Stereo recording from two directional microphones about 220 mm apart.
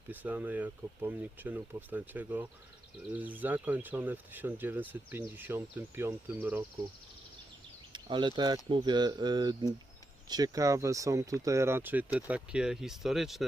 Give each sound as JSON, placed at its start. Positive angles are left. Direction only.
{"t": 0.1, "sound": "speech", "side_deg": -10}
{"t": 7.9, "sound": "speech", "side_deg": -20}